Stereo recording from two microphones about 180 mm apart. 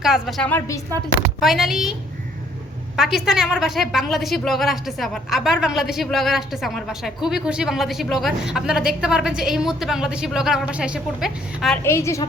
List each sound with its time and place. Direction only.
0.0 s speech: centre (ahead or behind)
1.4 s speech: centre (ahead or behind)
11.8 s a woman's voice: 15° left (ahead or behind)